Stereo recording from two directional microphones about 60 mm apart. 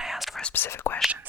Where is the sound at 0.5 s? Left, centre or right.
Left.